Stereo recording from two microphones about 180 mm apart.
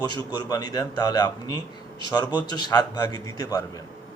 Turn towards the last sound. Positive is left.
turn(degrees=20)  # may be behind; listen again after turning